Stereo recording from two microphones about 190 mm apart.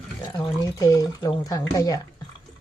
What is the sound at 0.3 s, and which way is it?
Speech, 20° left (ahead or behind).